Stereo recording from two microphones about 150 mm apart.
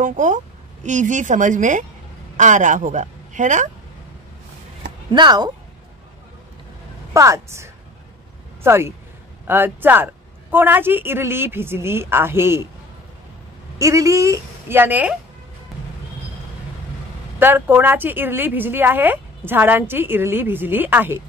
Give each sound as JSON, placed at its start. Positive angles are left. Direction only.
{"t": 0.0, "sound": "a woman's voice", "side_deg": -55}
{"t": 5.1, "sound": "a woman's voice", "side_deg": -30}
{"t": 7.2, "sound": "a woman's voice", "side_deg": -20}
{"t": 13.7, "sound": "a woman's voice", "side_deg": -20}
{"t": 17.4, "sound": "speech", "side_deg": -15}